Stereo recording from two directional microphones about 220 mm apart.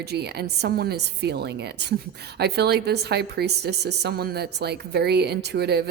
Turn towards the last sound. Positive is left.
turn(degrees=-45)  # may be behind; listen again after turning